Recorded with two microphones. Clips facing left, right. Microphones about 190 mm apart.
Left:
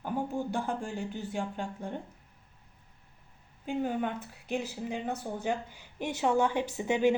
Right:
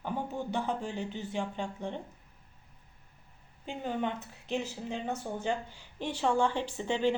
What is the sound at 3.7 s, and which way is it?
A woman's voice, 10° left (ahead or behind).